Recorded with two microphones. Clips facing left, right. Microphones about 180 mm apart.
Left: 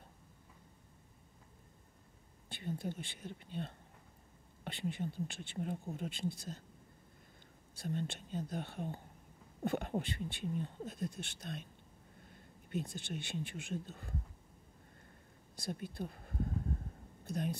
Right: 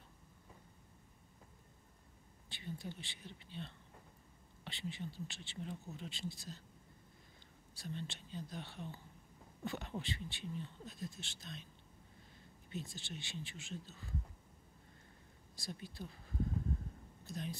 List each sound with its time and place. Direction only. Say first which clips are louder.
2.5 s speech: left 6 dB; 50° left (ahead or behind)
7.8 s speech: left 7 dB; 50° left (ahead or behind)
15.6 s speech: left 6 dB; 55° left (ahead or behind)